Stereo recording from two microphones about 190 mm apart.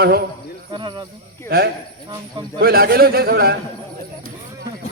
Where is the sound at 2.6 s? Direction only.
55° right (ahead or behind).